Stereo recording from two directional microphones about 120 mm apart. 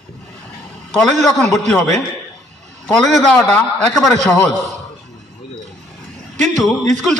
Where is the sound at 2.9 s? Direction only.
5° left (ahead or behind).